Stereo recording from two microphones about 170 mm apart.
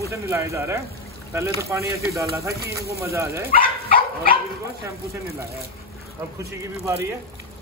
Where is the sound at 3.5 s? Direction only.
55° left (ahead or behind).